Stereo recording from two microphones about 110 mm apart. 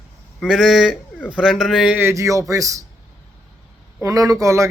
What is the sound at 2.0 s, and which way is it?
Speech, 30° right (ahead or behind).